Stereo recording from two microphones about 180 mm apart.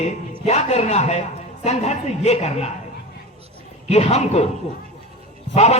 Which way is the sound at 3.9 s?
35° left (ahead or behind).